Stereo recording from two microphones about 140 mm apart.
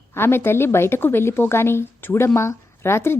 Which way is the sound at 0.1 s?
15° left (ahead or behind).